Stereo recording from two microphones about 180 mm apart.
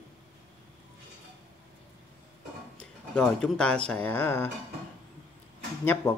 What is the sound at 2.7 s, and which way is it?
Speech, 5° left (ahead or behind).